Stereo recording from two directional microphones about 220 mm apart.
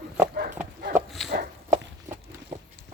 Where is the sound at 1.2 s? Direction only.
40° right (ahead or behind).